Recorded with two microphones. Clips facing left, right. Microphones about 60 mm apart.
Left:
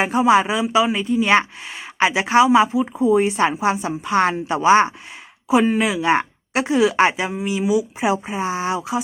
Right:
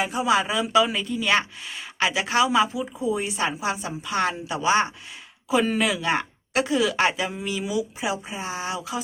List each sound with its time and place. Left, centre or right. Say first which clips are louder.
0.0 s a woman's voice: left 7 dB; left
0.5 s speech: left 3 dB; centre
0.9 s a woman's voice: left 6 dB; left
5.5 s a woman's voice: left 5 dB; centre
7.3 s a woman's voice: left 8 dB; centre
8.1 s a woman's voice: left 8 dB; left